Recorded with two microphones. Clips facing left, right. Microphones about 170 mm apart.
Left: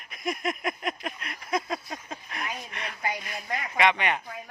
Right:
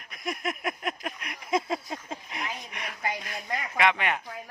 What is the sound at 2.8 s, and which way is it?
Speech, 5° right (ahead or behind).